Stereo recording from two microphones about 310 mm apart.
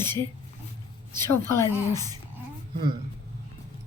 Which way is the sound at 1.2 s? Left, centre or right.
Centre.